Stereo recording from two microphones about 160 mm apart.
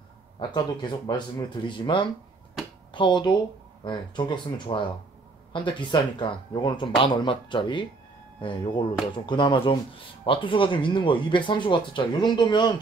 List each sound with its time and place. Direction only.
0.4 s speech: 25° left (ahead or behind)